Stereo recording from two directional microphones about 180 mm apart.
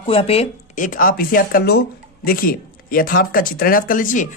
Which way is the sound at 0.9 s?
50° left (ahead or behind).